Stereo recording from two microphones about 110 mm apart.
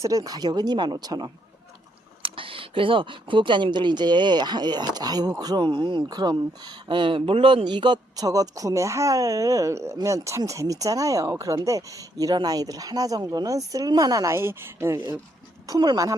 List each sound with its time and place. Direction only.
0.0 s speech: 30° right (ahead or behind)
2.2 s speech: 55° right (ahead or behind); by 15.2 s 25° right (ahead or behind)
15.6 s speech: 40° right (ahead or behind)